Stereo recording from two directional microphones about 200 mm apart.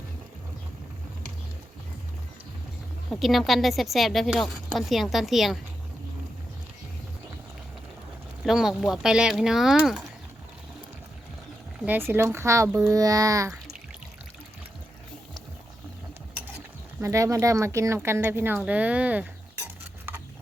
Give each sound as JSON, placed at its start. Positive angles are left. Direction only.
{"t": 3.1, "sound": "speech", "side_deg": 0}
{"t": 8.4, "sound": "speech", "side_deg": 0}
{"t": 11.8, "sound": "speech", "side_deg": -10}
{"t": 17.0, "sound": "speech", "side_deg": -15}